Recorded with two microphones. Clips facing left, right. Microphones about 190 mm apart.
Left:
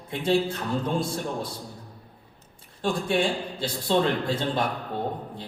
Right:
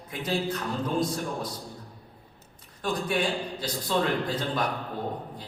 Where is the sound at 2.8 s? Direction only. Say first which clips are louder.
Left 3 dB; 25° left (ahead or behind).